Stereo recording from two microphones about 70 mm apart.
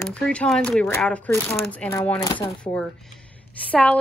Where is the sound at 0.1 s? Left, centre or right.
Centre.